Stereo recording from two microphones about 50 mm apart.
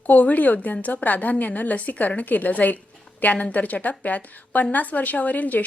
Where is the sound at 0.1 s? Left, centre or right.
Left.